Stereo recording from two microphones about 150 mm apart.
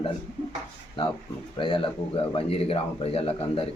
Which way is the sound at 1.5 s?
35° left (ahead or behind).